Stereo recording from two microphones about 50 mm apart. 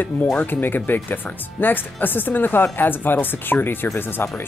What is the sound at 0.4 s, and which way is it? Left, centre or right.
Speech, left.